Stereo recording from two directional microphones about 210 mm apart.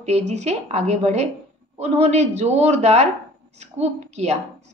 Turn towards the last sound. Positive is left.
turn(degrees=-30)  # may be behind; listen again after turning